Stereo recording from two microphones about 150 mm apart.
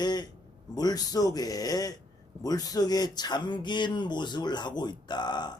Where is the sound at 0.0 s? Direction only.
30° left (ahead or behind).